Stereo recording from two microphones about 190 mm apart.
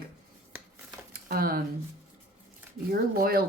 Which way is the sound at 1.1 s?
50° right (ahead or behind).